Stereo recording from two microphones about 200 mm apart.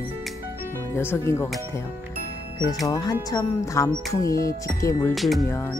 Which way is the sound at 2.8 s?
20° left (ahead or behind).